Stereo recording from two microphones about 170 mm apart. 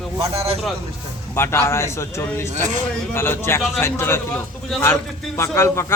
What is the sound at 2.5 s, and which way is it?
Speech, 45° right (ahead or behind).